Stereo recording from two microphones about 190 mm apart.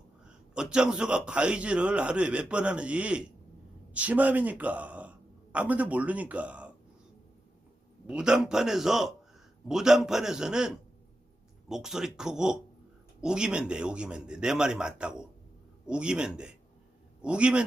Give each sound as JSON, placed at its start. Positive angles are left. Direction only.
{"t": 0.3, "sound": "a man's voice", "side_deg": -5}
{"t": 8.0, "sound": "a man's voice", "side_deg": -5}